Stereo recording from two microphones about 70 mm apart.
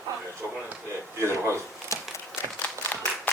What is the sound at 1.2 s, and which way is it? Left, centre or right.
Speech, right.